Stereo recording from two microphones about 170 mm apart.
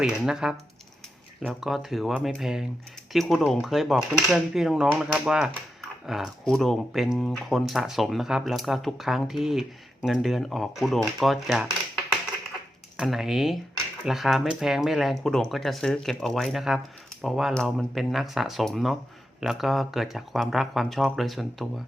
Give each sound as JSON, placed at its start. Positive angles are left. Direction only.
{"t": 0.0, "sound": "speech", "side_deg": -5}
{"t": 13.0, "sound": "speech", "side_deg": 0}